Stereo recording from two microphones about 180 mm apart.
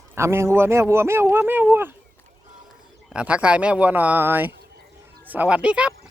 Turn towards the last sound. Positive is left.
turn(degrees=-5)  # may be behind; listen again after turning